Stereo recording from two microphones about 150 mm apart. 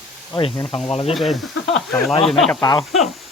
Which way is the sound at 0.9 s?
40° left (ahead or behind).